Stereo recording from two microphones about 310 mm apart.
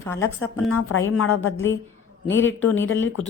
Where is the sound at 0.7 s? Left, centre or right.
Left.